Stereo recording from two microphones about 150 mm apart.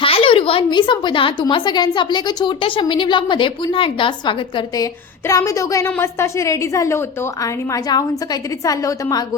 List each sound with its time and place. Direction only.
0.0 s a woman's voice: 40° left (ahead or behind); by 9.2 s 20° left (ahead or behind)